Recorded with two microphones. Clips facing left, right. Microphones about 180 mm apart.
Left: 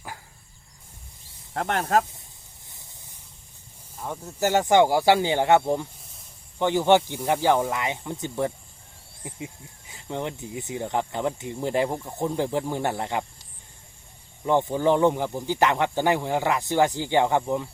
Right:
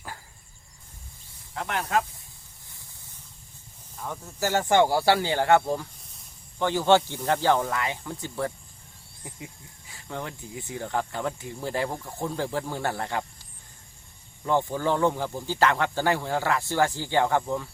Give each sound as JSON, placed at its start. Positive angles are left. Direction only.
{"t": 1.5, "sound": "speech", "side_deg": 40}
{"t": 4.4, "sound": "speech", "side_deg": 20}
{"t": 14.4, "sound": "speech", "side_deg": 20}